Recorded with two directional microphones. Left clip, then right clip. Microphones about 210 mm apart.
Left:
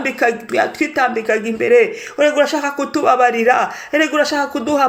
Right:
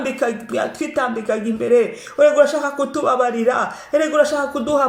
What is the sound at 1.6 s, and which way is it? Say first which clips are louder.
Speech: left 3 dB; 25° left (ahead or behind).